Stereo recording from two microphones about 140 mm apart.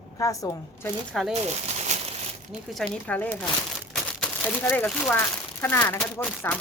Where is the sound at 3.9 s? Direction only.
10° left (ahead or behind).